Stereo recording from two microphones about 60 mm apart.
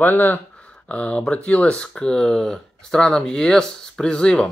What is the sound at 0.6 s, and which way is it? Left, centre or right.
Speech, left.